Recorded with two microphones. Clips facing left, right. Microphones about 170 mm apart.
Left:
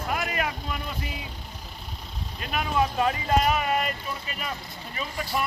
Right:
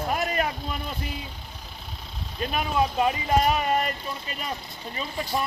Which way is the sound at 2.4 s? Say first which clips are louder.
Right 3 dB; 30° right (ahead or behind).